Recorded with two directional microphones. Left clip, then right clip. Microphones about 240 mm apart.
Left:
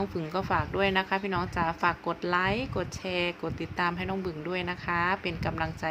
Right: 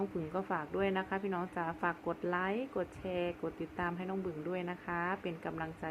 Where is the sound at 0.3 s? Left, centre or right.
Left.